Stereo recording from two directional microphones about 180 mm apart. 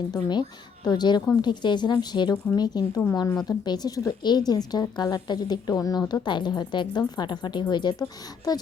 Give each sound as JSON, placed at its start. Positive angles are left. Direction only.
{"t": 0.1, "sound": "speech", "side_deg": 25}